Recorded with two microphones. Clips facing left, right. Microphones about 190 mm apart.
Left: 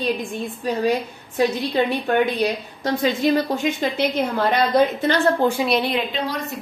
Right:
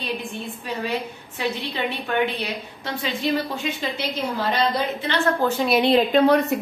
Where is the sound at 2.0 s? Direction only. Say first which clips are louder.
Left 5 dB; 40° left (ahead or behind).